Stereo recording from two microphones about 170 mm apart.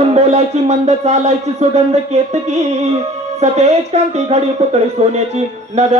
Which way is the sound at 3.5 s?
40° right (ahead or behind).